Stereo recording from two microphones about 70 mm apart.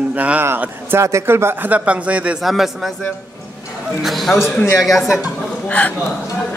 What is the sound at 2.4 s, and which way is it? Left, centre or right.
Speech, centre.